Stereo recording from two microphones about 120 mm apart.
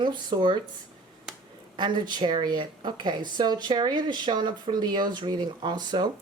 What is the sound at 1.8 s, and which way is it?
Speech, 40° right (ahead or behind).